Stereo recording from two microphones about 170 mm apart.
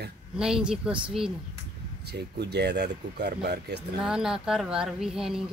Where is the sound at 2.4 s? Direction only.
80° right.